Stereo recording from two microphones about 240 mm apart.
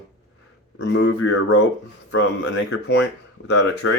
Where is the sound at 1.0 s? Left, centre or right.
Left.